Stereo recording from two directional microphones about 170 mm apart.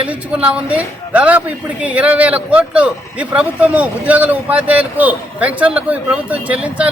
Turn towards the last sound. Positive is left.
turn(degrees=-5)  # may be behind; listen again after turning